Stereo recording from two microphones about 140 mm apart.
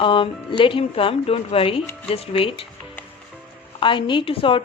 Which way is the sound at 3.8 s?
35° left (ahead or behind).